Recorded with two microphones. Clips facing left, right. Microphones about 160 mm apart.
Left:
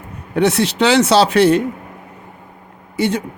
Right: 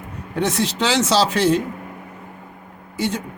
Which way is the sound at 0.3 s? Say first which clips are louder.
Left 6 dB; 70° left (ahead or behind).